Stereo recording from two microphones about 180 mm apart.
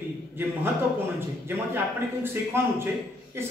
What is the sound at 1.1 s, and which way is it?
Speech, 10° right (ahead or behind).